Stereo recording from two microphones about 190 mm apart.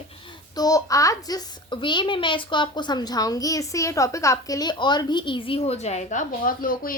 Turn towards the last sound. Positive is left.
turn(degrees=50)  # may be behind; listen again after turning